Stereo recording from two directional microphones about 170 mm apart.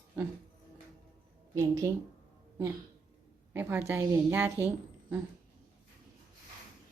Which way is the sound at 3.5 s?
10° right (ahead or behind).